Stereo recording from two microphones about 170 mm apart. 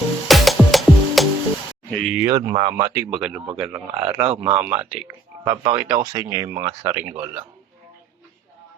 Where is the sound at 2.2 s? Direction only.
20° right (ahead or behind).